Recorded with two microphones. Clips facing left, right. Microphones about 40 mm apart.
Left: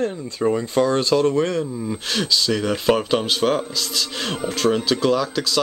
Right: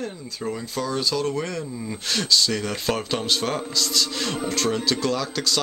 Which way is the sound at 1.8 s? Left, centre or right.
Centre.